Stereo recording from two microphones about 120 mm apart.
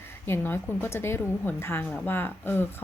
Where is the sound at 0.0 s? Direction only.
20° left (ahead or behind).